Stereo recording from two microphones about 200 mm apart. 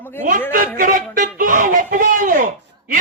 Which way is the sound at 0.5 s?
40° right (ahead or behind).